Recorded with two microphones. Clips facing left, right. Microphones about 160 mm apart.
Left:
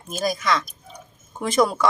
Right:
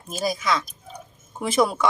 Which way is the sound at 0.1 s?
Centre (ahead or behind).